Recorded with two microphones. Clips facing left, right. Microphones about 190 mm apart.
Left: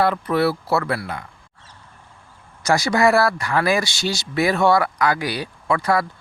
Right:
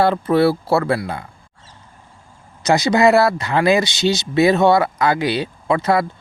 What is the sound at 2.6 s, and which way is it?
Speech, 20° right (ahead or behind).